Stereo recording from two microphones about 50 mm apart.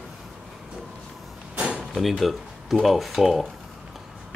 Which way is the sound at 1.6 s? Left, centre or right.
Centre.